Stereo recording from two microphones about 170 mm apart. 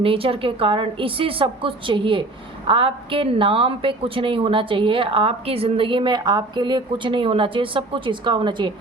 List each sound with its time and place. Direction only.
0.0 s a woman's voice: 35° right (ahead or behind)